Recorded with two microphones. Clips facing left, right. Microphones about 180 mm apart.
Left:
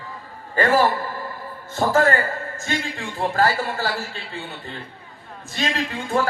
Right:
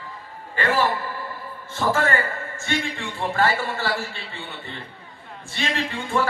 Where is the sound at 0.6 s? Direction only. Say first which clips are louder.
Left 4 dB; 40° left (ahead or behind).